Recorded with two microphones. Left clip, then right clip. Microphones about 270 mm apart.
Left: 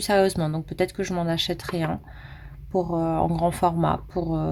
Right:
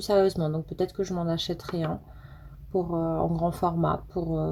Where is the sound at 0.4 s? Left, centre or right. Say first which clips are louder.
Left 3 dB; left.